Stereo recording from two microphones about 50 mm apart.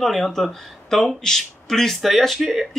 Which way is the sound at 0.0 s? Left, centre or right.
Centre.